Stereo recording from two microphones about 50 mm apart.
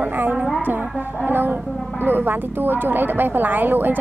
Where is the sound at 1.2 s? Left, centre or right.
Right.